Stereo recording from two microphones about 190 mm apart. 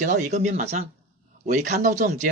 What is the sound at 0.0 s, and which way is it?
Speech, 40° right (ahead or behind).